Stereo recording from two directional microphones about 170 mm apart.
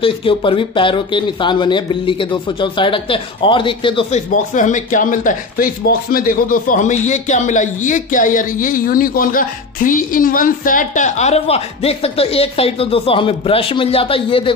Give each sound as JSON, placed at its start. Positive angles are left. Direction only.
{"t": 0.0, "sound": "speech", "side_deg": 30}
{"t": 4.1, "sound": "speech", "side_deg": 45}